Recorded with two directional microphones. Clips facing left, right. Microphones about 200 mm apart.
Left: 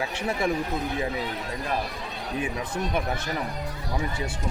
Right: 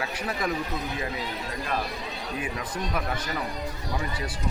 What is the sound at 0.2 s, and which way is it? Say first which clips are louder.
Speech: left 4 dB; 25° left (ahead or behind).